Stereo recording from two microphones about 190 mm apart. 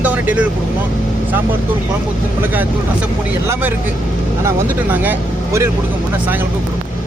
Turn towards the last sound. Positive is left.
turn(degrees=-10)  # may be behind; listen again after turning